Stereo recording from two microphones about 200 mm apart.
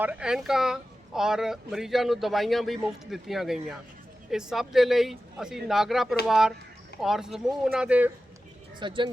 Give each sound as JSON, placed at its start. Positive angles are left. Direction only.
{"t": 0.0, "sound": "speech", "side_deg": -5}
{"t": 8.8, "sound": "speech", "side_deg": -25}